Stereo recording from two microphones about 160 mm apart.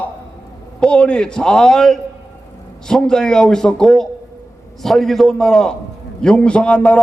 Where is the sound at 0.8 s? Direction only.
5° left (ahead or behind).